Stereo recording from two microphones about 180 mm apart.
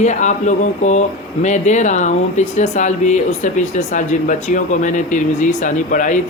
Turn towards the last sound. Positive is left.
turn(degrees=45)  # may be behind; listen again after turning